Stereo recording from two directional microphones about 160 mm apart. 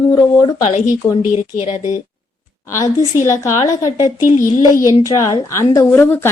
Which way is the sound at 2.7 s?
20° left (ahead or behind).